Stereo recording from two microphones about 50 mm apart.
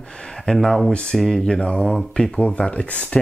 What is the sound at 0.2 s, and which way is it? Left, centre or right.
Speech, centre.